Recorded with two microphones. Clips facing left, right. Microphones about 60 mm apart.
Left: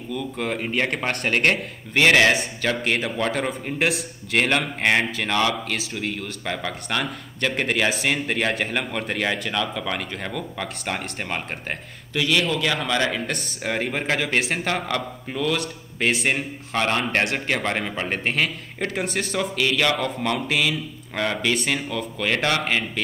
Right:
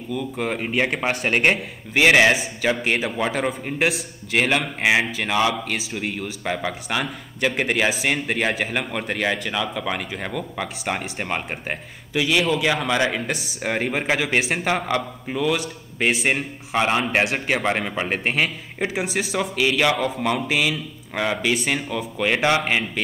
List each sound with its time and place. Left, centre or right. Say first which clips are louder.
0.1 s speech: right 1 dB; centre